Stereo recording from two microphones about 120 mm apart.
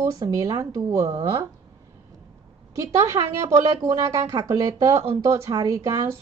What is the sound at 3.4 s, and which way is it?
Speech, 25° right (ahead or behind).